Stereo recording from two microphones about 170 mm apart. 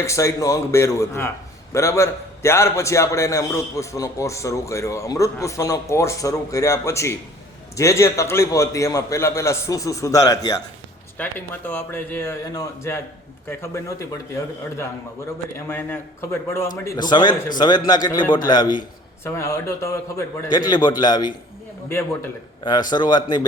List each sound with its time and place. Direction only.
0.0 s a man's voice: 15° left (ahead or behind)
15.5 s a man's voice: 15° left (ahead or behind)
21.8 s a man's voice: 15° left (ahead or behind)